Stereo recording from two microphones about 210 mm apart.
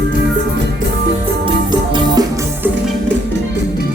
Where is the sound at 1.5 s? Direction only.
20° right (ahead or behind).